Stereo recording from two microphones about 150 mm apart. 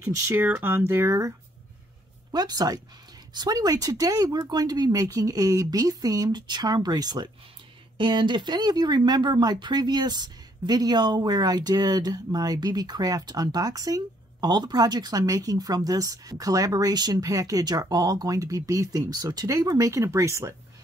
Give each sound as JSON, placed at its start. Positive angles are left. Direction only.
{"t": 0.0, "sound": "speech", "side_deg": -15}
{"t": 2.3, "sound": "speech", "side_deg": -25}